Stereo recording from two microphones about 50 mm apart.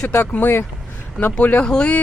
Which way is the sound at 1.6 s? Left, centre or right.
Centre.